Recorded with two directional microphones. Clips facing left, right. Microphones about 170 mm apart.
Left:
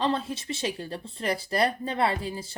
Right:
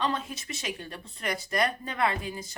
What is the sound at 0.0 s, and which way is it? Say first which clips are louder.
Speech: left 3 dB; 30° left (ahead or behind).